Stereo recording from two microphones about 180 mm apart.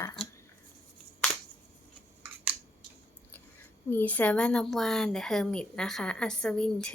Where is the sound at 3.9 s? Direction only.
10° left (ahead or behind).